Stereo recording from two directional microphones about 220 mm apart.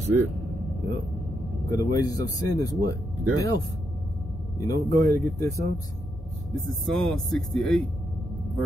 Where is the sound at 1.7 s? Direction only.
15° left (ahead or behind).